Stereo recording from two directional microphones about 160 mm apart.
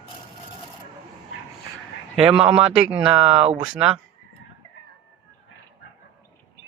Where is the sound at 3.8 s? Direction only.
5° right (ahead or behind).